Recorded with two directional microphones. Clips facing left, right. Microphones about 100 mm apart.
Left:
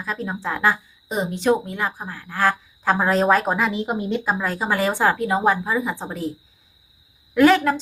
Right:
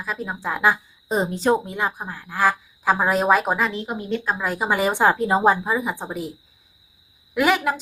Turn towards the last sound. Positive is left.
turn(degrees=-10)  # may be behind; listen again after turning